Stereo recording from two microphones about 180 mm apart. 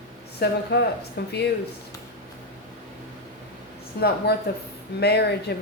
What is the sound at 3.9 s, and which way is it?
Speech, 60° left (ahead or behind).